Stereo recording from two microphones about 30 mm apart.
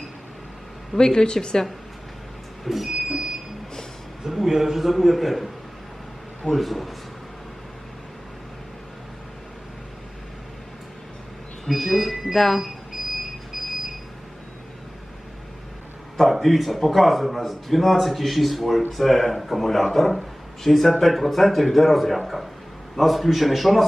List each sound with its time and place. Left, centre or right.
0.9 s speech: left
2.6 s smoke detector: centre
3.1 s smoke detector: right
4.2 s a man's voice: centre
11.7 s speech: centre
12.3 s speech: centre
12.5 s a sound: centre
13.5 s alarm clock: centre
16.1 s speech: centre